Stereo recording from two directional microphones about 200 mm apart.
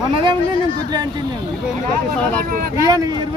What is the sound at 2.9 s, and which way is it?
Speech, 20° right (ahead or behind).